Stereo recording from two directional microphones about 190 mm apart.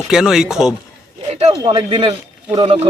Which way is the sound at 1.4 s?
30° right (ahead or behind).